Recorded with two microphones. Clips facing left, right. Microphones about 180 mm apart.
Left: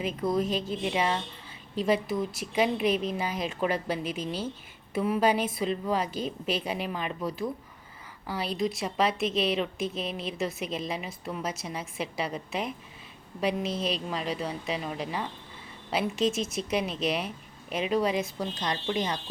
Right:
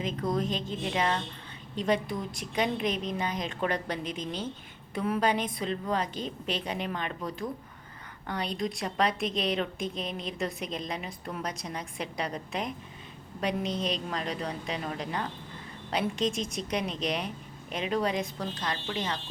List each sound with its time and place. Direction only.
0.0 s a woman's voice: 10° left (ahead or behind)
18.6 s a woman's voice: 15° left (ahead or behind)